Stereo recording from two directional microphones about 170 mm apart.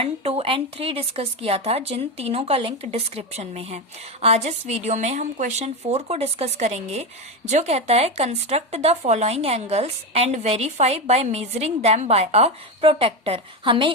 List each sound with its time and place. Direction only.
0.0 s a woman's voice: 35° right (ahead or behind)